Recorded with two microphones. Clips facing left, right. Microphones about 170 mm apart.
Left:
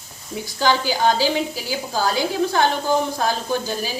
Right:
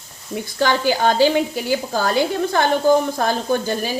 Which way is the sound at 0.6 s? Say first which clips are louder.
Right 1 dB; 55° right (ahead or behind).